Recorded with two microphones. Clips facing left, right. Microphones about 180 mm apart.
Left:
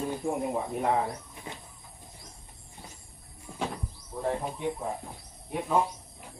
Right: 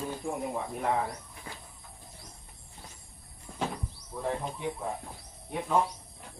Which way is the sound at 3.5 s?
10° left (ahead or behind).